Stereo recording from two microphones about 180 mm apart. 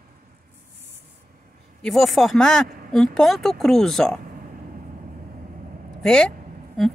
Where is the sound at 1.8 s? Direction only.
Centre (ahead or behind).